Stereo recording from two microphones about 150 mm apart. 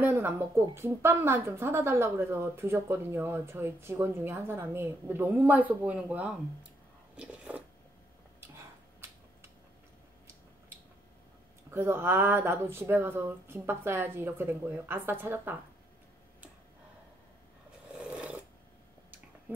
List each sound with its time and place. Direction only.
0.0 s a woman's voice: 15° right (ahead or behind)
7.2 s a sound: 10° right (ahead or behind)
11.7 s a woman's voice: 15° right (ahead or behind)
18.1 s filing: 10° right (ahead or behind)